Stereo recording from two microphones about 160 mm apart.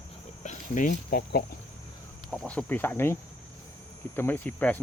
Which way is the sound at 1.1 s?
70° left (ahead or behind).